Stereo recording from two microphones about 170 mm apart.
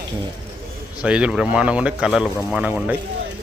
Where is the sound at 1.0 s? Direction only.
5° right (ahead or behind).